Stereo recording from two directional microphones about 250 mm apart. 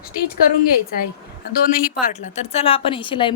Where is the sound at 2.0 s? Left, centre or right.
Left.